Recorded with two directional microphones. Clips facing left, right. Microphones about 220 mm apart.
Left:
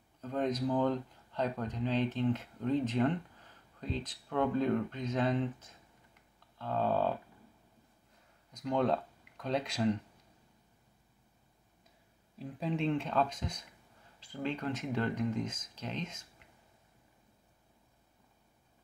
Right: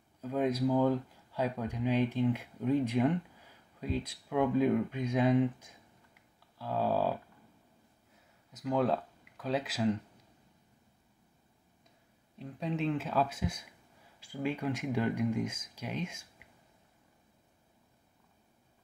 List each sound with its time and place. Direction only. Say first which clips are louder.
0.2 s speech: right 3 dB; 10° right (ahead or behind)
8.5 s speech: right 1 dB; 5° right (ahead or behind)
12.4 s speech: even; centre (ahead or behind)